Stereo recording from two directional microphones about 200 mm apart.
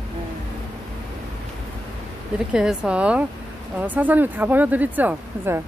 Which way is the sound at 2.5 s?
5° right (ahead or behind).